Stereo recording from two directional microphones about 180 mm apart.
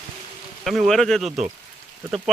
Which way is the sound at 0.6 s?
Centre (ahead or behind).